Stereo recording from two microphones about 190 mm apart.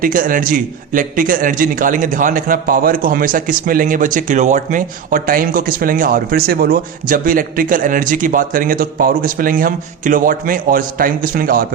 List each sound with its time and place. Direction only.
0.0 s a man's voice: 45° right (ahead or behind)